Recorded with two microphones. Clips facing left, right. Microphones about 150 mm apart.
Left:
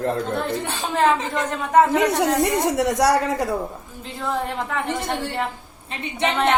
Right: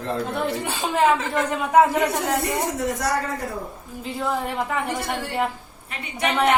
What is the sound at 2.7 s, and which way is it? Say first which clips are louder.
Speech: left 6 dB; 75° left (ahead or behind).